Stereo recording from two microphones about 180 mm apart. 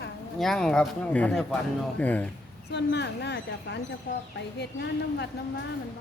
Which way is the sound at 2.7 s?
70° left (ahead or behind).